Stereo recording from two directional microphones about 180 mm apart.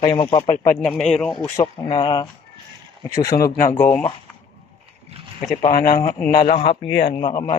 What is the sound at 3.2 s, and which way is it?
Speech, 55° left (ahead or behind).